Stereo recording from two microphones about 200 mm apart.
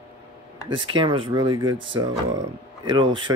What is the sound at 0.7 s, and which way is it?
Speech, 25° right (ahead or behind).